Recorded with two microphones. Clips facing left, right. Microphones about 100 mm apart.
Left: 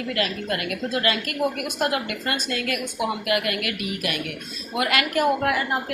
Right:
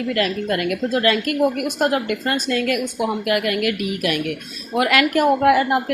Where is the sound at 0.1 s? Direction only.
50° right (ahead or behind).